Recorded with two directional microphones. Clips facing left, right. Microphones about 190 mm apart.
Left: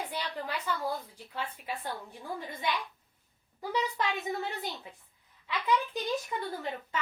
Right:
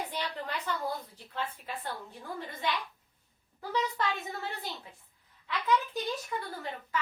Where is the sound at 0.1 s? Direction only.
10° left (ahead or behind).